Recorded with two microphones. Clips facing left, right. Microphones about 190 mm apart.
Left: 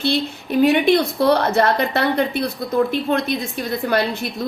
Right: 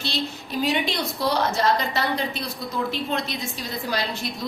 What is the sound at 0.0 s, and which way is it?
A woman's voice, 55° left (ahead or behind).